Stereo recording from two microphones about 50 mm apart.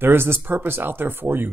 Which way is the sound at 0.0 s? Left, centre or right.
Right.